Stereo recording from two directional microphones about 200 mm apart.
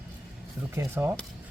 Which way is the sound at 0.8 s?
15° right (ahead or behind).